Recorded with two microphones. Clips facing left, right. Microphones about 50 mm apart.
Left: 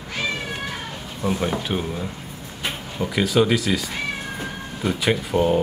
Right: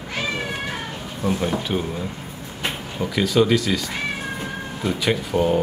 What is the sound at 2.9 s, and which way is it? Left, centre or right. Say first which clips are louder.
Speech: even; centre.